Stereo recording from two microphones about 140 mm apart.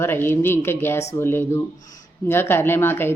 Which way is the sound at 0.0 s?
15° left (ahead or behind).